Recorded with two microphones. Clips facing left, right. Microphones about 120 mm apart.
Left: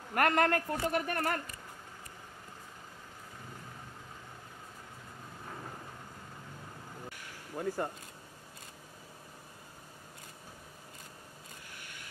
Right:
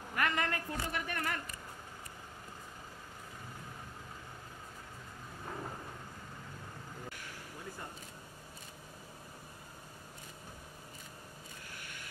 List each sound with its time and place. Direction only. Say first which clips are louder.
0.1 s a man's voice: left 7 dB; 50° left (ahead or behind)
7.5 s speech: left 14 dB; 60° left (ahead or behind)